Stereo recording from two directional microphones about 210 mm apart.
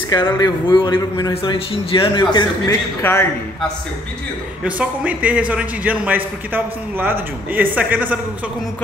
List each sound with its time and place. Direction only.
0.1 s a man's voice: 20° left (ahead or behind)
3.0 s a man's voice: 10° left (ahead or behind)
4.6 s a man's voice: 5° right (ahead or behind)